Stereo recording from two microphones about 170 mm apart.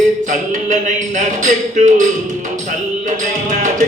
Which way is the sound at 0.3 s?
50° right (ahead or behind).